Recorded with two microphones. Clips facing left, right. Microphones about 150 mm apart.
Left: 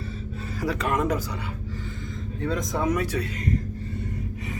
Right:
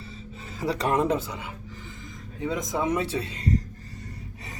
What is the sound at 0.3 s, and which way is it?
Speech, 25° right (ahead or behind).